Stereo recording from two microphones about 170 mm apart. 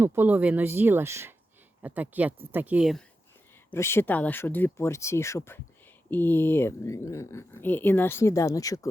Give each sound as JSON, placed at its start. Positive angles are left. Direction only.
{"t": 0.0, "sound": "speech", "side_deg": -15}
{"t": 3.7, "sound": "speech", "side_deg": 15}